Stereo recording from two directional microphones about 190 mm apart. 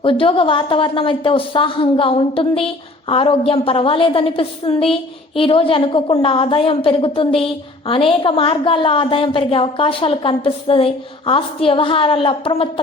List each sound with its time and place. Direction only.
0.0 s a woman's voice: 30° left (ahead or behind)